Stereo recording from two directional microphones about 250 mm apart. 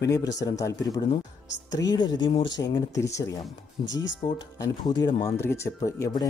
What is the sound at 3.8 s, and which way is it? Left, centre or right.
Speech, left.